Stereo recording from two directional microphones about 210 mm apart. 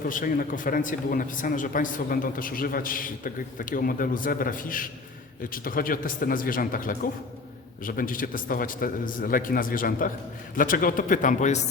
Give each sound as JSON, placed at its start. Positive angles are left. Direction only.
{"t": 0.1, "sound": "a man's voice", "side_deg": 40}